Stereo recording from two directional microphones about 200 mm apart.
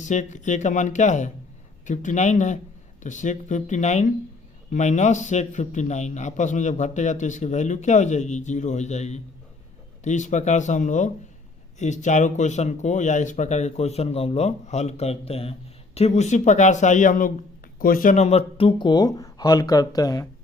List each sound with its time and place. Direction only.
0.0 s a man's voice: 35° left (ahead or behind); by 20.2 s 20° left (ahead or behind)